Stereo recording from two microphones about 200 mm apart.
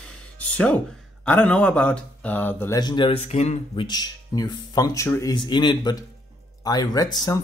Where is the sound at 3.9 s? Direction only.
20° left (ahead or behind).